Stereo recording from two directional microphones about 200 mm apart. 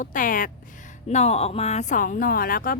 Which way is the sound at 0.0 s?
40° left (ahead or behind).